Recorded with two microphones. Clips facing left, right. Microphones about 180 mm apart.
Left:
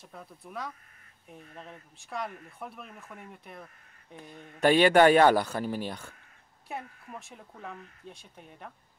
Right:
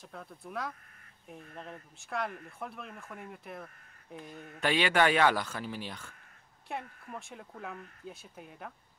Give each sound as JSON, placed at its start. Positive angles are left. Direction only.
{"t": 0.0, "sound": "speech", "side_deg": 5}
{"t": 4.6, "sound": "speech", "side_deg": 45}
{"t": 6.7, "sound": "speech", "side_deg": 0}